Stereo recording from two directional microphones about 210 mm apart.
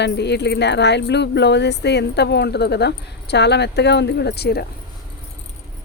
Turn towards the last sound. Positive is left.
turn(degrees=50)  # may be behind; listen again after turning